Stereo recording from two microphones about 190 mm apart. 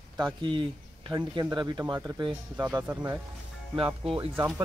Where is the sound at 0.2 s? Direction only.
25° right (ahead or behind).